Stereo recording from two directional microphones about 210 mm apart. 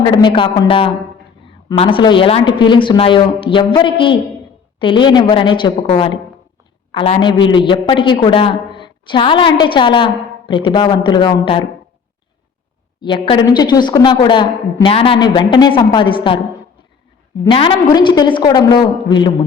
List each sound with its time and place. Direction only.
0.0 s a man's voice: 20° left (ahead or behind)
13.0 s a man's voice: 25° left (ahead or behind)
17.4 s a man's voice: 25° left (ahead or behind)